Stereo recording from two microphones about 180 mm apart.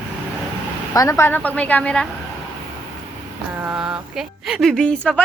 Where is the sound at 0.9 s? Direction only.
15° left (ahead or behind).